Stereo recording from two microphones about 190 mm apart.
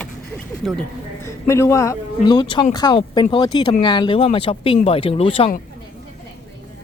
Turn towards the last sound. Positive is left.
turn(degrees=30)  # may be behind; listen again after turning